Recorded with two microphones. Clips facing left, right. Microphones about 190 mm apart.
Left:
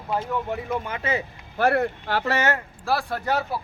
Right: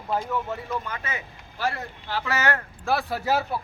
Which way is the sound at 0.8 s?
25° left (ahead or behind).